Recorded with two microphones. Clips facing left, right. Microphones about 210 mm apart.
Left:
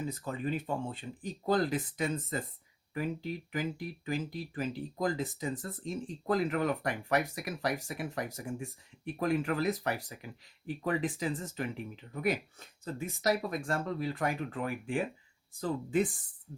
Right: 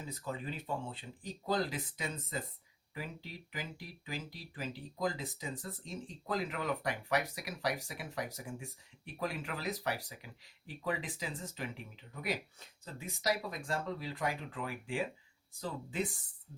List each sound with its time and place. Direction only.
0.1 s speech: 50° left (ahead or behind)